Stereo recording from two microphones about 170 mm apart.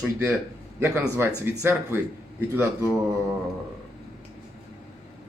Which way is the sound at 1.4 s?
15° right (ahead or behind).